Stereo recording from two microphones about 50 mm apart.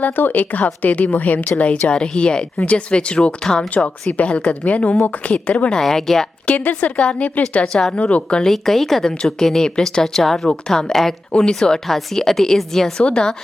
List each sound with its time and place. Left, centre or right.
0.0 s speech: left
1.9 s speech: centre
3.4 s speech: centre
4.3 s speech: left
5.7 s speech: centre
6.5 s speech: left
7.9 s speech: left
8.4 s speech: centre
11.9 s a woman's voice: centre
13.1 s speech: centre